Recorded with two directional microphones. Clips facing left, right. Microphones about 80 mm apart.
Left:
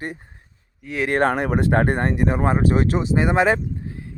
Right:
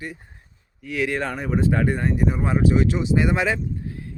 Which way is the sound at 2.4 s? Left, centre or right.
Left.